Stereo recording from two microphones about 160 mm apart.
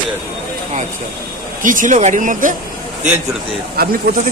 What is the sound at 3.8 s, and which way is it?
Speech, 75° right (ahead or behind).